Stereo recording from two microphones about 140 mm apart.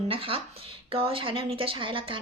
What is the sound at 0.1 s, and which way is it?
Speech, 40° right (ahead or behind).